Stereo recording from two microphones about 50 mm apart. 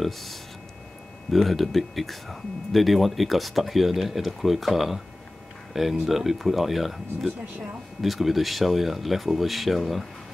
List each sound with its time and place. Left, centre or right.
0.0 s speech: centre
7.2 s speech: right
8.0 s speech: centre